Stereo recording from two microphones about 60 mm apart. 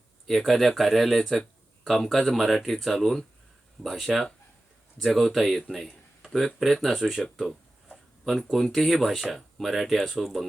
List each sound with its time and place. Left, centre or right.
0.3 s speech: centre